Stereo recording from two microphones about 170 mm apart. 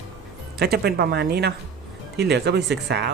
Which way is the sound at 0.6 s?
70° right (ahead or behind).